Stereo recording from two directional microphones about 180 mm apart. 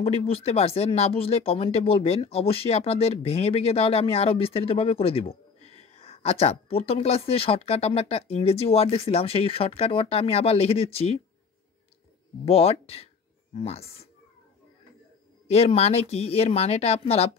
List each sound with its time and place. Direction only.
0.0 s speech: 35° left (ahead or behind)
12.4 s speech: 35° left (ahead or behind)
15.4 s speech: 35° left (ahead or behind)